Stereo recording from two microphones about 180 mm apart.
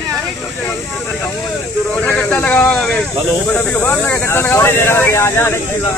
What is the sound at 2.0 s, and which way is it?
Speech, 10° left (ahead or behind).